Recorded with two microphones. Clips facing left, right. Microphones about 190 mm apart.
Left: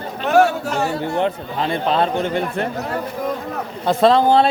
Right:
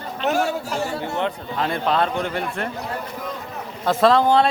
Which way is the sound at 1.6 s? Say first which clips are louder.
Left 2 dB; 30° left (ahead or behind).